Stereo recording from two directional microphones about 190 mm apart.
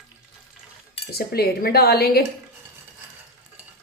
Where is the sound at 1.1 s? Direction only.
55° left (ahead or behind).